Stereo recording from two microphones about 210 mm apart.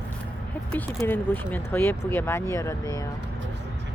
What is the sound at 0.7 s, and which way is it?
Speech, 10° left (ahead or behind).